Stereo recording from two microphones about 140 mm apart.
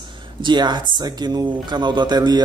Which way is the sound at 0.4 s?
35° right (ahead or behind).